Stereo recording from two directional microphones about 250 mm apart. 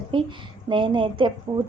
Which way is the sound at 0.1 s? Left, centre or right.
Centre.